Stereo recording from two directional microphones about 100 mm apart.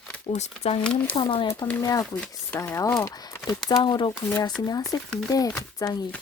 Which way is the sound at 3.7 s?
45° left (ahead or behind).